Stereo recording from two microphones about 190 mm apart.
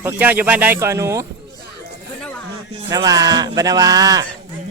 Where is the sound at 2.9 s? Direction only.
20° right (ahead or behind).